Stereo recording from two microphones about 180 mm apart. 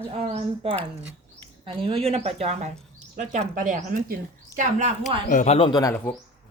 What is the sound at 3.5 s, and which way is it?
Speech, 45° right (ahead or behind).